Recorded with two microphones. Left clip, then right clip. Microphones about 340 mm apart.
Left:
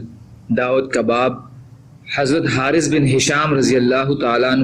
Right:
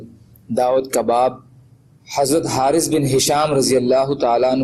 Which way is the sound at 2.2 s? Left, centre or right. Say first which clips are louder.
Right 1 dB; centre.